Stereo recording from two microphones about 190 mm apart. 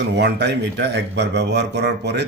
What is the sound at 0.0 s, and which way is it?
A man's voice, 65° right (ahead or behind).